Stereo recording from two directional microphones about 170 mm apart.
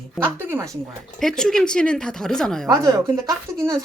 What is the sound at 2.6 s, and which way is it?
Speech, 20° right (ahead or behind).